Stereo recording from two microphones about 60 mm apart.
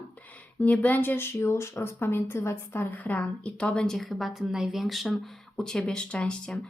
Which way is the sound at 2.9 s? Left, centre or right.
Left.